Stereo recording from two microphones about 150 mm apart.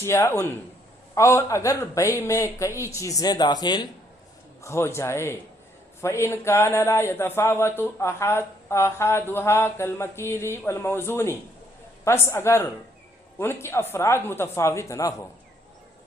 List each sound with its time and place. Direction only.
0.0 s a man's voice: 15° left (ahead or behind)
4.6 s a man's voice: 20° left (ahead or behind)